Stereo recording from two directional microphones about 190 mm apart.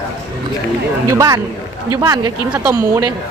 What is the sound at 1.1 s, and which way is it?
Speech, 20° right (ahead or behind).